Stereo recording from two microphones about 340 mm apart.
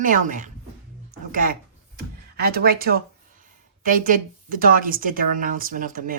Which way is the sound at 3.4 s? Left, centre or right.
Right.